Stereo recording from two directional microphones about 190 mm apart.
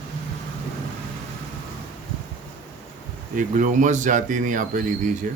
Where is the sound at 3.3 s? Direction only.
40° right (ahead or behind).